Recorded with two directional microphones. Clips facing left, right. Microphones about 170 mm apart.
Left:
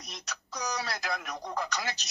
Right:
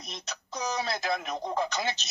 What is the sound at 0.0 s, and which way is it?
A woman's voice, 20° right (ahead or behind).